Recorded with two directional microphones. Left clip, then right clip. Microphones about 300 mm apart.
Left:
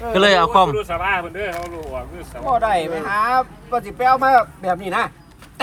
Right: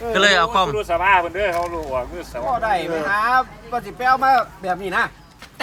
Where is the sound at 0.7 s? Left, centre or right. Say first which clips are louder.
Right 4 dB; right.